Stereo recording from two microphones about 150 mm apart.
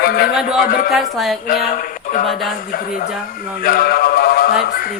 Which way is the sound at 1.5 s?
65° left (ahead or behind).